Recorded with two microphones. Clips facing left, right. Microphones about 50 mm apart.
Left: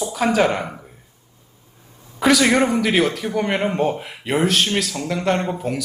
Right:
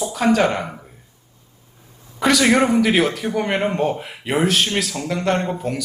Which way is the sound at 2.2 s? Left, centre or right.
Centre.